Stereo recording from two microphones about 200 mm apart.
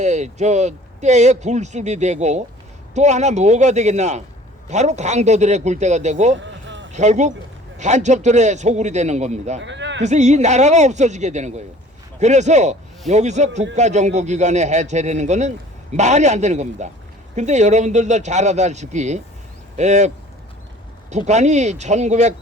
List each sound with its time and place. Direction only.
0.0 s a man's voice: 35° right (ahead or behind)
6.3 s a sound: 65° right (ahead or behind)
6.9 s a man's voice: 35° right (ahead or behind)
9.6 s a sound: 65° right (ahead or behind)
10.0 s a man's voice: 35° right (ahead or behind)
21.1 s a man's voice: 35° right (ahead or behind)